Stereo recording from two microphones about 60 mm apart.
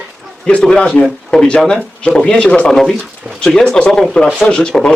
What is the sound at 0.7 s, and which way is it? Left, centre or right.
A man's voice, left.